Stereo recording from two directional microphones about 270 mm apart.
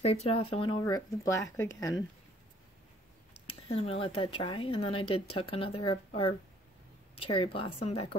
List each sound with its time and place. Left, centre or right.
0.0 s speech: left
3.4 s speech: left